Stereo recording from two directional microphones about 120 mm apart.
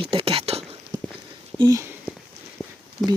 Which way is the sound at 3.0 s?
Centre (ahead or behind).